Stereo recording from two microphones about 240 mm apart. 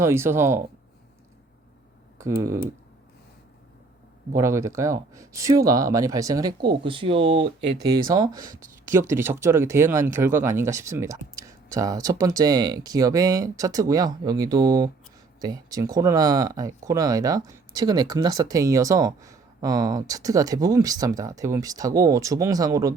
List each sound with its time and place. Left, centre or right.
0.0 s speech: centre
2.1 s speech: centre
4.4 s speech: centre